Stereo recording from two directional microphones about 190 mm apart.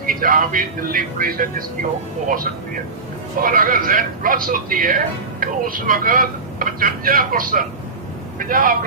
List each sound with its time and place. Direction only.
0.0 s a man's voice: 45° right (ahead or behind)